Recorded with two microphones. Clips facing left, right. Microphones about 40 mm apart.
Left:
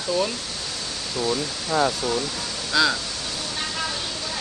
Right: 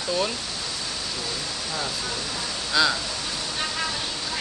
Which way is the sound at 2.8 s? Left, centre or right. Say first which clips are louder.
Left 1 dB; centre.